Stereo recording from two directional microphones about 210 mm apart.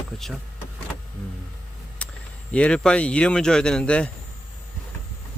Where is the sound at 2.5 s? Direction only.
5° left (ahead or behind).